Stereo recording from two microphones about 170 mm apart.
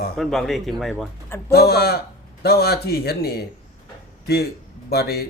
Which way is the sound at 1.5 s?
65° left (ahead or behind).